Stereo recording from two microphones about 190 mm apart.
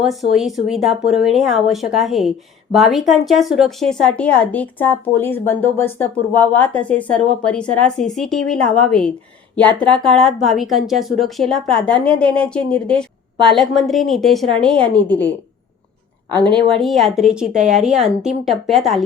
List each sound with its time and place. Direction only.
0.0 s speech: centre (ahead or behind)
16.4 s speech: 25° right (ahead or behind)
16.6 s speech: centre (ahead or behind)